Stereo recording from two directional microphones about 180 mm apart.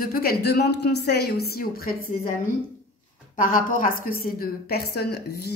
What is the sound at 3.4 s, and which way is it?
Speech, 50° left (ahead or behind).